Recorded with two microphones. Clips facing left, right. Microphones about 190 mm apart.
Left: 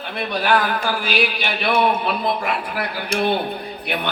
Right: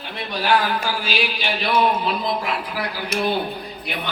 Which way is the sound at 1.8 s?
60° left (ahead or behind).